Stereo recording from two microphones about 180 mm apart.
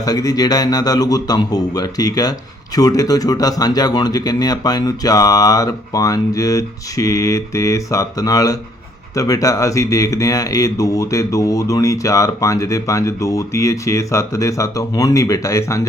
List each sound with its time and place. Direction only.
0.0 s speech: 20° left (ahead or behind)